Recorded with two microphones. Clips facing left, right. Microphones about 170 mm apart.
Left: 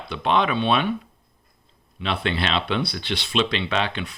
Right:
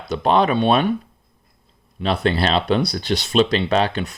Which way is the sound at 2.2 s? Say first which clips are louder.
Right 6 dB; 40° right (ahead or behind).